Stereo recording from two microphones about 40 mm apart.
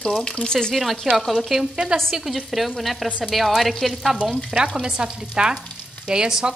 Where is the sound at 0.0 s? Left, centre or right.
Centre.